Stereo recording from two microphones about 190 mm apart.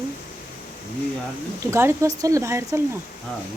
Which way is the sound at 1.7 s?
15° right (ahead or behind).